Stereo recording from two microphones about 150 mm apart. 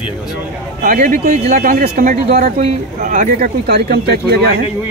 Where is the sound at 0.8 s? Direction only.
65° right (ahead or behind); by 4.5 s 90° right.